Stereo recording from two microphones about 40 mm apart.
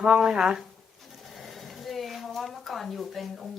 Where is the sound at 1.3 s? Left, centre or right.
Centre.